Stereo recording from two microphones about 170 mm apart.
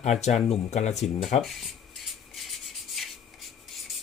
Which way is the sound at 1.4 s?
Centre (ahead or behind).